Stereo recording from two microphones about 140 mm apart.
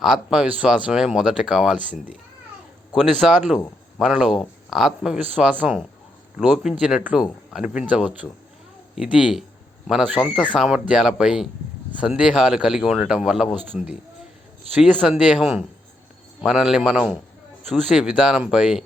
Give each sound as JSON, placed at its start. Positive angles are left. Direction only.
{"t": 0.0, "sound": "speech", "side_deg": -5}
{"t": 14.7, "sound": "speech", "side_deg": -10}